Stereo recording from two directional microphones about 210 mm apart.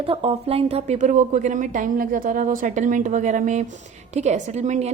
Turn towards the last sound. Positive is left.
turn(degrees=-30)  # may be behind; listen again after turning